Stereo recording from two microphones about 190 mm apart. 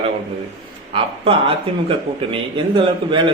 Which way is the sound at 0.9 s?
30° right (ahead or behind).